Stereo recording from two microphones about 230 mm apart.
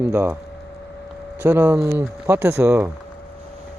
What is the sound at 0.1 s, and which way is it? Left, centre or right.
Speech, centre.